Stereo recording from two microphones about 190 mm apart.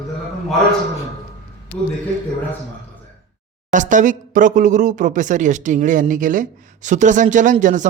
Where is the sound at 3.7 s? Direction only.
40° right (ahead or behind).